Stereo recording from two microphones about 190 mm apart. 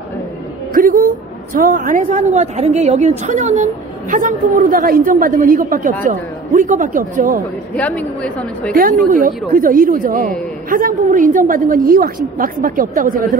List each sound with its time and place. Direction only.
0.7 s a woman's voice: 45° right (ahead or behind)
7.7 s a woman's voice: 5° left (ahead or behind)
8.7 s a woman's voice: 45° right (ahead or behind)